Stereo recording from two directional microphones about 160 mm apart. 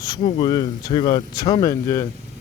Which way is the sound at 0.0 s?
25° left (ahead or behind).